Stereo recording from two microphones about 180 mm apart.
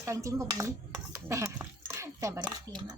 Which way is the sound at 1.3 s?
15° right (ahead or behind).